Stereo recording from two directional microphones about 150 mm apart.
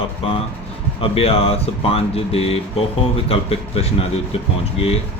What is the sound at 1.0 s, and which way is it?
Speech, 40° left (ahead or behind).